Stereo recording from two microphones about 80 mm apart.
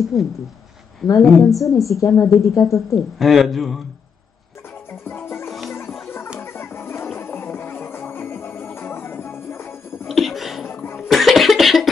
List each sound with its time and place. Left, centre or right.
0.0 s a man's voice: centre
1.0 s a woman's voice: left
3.2 s a man's voice: centre
5.0 s music: left
10.0 s a sound: centre
10.7 s cough: left
11.0 s cough: centre